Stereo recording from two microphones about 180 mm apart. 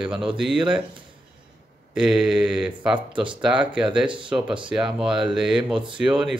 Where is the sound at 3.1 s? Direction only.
25° right (ahead or behind).